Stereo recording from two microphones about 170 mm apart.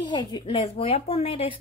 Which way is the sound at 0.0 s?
25° left (ahead or behind).